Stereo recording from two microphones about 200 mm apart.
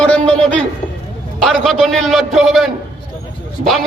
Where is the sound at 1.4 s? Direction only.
Centre (ahead or behind).